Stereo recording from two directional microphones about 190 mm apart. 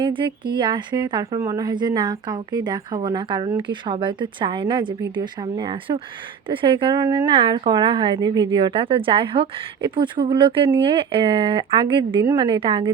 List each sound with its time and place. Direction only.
0.0 s a woman's voice: 25° right (ahead or behind)